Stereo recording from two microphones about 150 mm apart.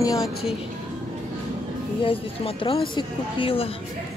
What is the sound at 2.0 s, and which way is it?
Speech, 40° left (ahead or behind).